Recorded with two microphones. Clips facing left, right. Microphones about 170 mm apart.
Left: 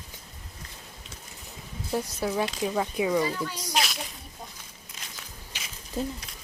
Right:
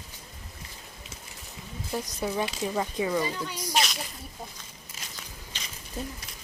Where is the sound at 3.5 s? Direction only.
10° right (ahead or behind).